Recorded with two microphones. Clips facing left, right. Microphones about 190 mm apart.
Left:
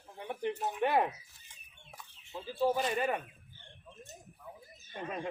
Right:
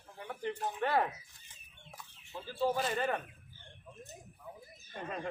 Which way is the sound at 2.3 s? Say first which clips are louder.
Left 2 dB; 15° left (ahead or behind).